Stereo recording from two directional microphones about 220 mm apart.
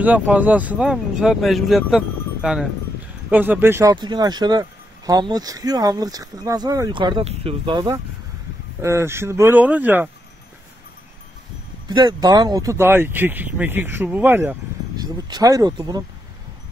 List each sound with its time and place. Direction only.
0.0 s speech: 5° right (ahead or behind)
11.9 s speech: 20° right (ahead or behind)